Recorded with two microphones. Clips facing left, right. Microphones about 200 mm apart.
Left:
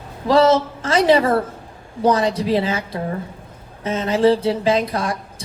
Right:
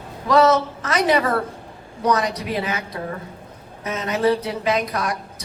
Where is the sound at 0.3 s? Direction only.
30° left (ahead or behind).